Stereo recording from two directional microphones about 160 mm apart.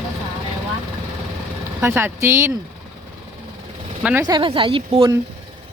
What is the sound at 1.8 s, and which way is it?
Speech, 15° right (ahead or behind).